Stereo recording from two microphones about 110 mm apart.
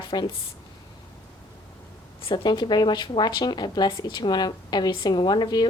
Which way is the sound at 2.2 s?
45° left (ahead or behind).